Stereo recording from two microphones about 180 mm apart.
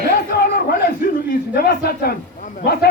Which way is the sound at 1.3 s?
55° left (ahead or behind).